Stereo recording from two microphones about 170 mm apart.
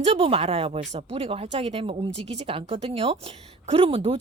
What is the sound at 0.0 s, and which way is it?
A woman's voice, 35° right (ahead or behind).